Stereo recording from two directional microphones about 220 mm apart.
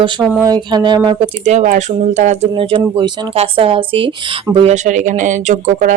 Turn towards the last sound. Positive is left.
turn(degrees=-35)  # may be behind; listen again after turning